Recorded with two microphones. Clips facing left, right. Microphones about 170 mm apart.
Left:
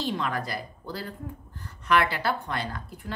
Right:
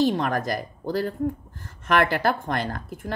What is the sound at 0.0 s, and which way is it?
A woman's voice, 45° right (ahead or behind).